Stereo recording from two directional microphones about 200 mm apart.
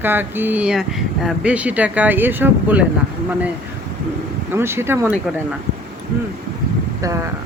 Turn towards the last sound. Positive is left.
turn(degrees=-15)  # may be behind; listen again after turning